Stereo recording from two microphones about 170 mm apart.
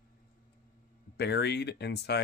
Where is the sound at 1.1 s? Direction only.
75° left (ahead or behind).